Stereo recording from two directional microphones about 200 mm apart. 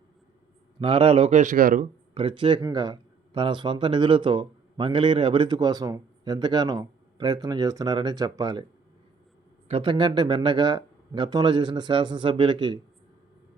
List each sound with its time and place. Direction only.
0.8 s speech: 30° right (ahead or behind); by 1.9 s 45° right (ahead or behind)
2.1 s speech: 25° right (ahead or behind)
9.6 s speech: 25° right (ahead or behind)